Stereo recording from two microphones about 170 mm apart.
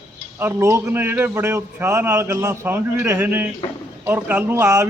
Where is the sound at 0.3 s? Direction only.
15° right (ahead or behind).